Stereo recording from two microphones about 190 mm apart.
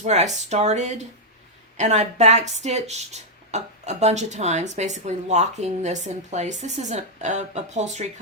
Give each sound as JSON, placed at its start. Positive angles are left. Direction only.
{"t": 0.0, "sound": "speech", "side_deg": -35}